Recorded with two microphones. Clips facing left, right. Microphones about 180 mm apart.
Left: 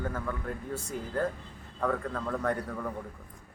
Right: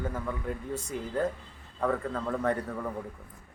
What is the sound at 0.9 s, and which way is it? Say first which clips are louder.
Speech: right 2 dB; 45° left (ahead or behind).